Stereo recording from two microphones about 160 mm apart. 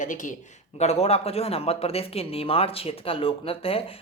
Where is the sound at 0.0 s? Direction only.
55° left (ahead or behind).